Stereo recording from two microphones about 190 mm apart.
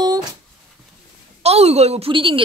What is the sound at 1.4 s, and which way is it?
A woman's voice, 35° right (ahead or behind).